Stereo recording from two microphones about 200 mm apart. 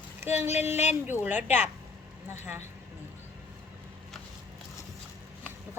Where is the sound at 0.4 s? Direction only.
35° left (ahead or behind).